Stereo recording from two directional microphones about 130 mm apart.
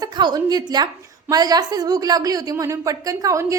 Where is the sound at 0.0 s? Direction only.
30° right (ahead or behind).